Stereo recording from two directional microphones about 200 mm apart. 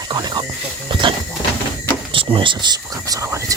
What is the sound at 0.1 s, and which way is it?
Music, 20° right (ahead or behind).